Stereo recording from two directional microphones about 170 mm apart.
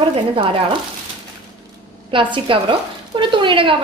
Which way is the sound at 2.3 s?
30° right (ahead or behind).